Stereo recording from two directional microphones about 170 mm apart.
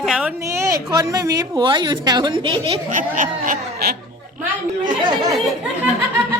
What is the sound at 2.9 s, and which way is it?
Goat, 50° right (ahead or behind).